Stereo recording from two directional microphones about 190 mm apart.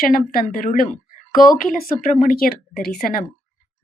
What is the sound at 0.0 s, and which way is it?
A woman's voice, 50° left (ahead or behind).